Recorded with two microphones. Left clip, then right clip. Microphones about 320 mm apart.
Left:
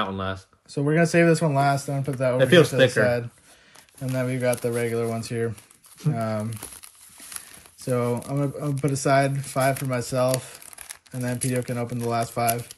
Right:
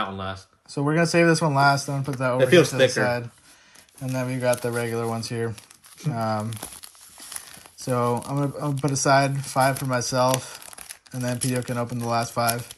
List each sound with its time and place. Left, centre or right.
0.7 s speech: centre
2.3 s speech: left
4.1 s speech: centre
7.8 s speech: centre